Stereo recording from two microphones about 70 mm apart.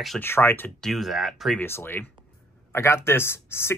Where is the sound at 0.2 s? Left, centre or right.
Left.